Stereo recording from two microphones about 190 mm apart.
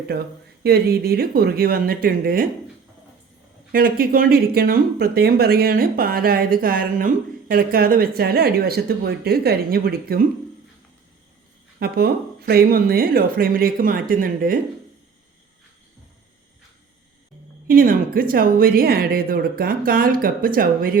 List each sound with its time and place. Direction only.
0.6 s speech: 55° right (ahead or behind)
3.7 s speech: 50° right (ahead or behind)
11.8 s speech: 55° right (ahead or behind)
17.7 s speech: 50° right (ahead or behind)